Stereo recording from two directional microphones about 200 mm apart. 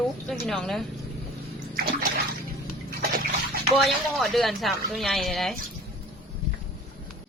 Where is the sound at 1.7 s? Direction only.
50° right (ahead or behind).